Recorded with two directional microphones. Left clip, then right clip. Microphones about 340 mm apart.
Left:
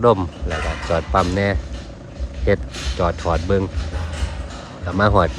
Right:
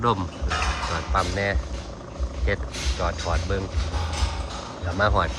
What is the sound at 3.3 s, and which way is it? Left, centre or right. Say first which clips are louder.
Speech: left 7 dB; left.